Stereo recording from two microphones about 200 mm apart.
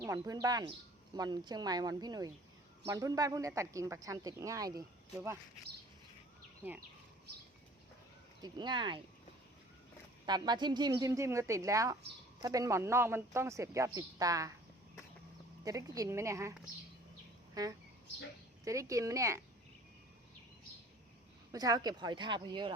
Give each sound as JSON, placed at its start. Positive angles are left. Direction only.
{"t": 0.0, "sound": "speech", "side_deg": -15}
{"t": 8.4, "sound": "speech", "side_deg": -20}
{"t": 10.2, "sound": "speech", "side_deg": -20}
{"t": 15.6, "sound": "speech", "side_deg": -15}
{"t": 21.5, "sound": "speech", "side_deg": -20}